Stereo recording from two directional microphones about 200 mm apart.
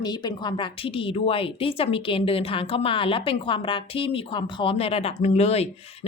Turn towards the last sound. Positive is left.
turn(degrees=30)  # may be behind; listen again after turning